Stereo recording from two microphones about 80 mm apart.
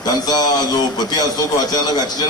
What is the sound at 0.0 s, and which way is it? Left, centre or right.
Speech, left.